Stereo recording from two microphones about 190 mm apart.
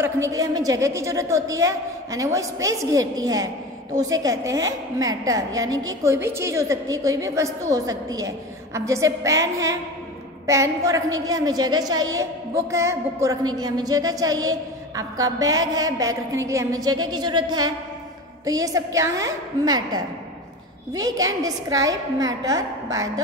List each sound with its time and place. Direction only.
0.0 s a woman's voice: 15° right (ahead or behind)